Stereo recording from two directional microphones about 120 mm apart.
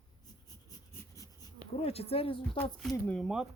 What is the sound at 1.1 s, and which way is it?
Writing, 30° left (ahead or behind).